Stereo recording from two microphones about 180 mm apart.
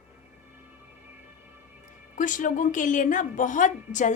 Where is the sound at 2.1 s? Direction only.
45° left (ahead or behind).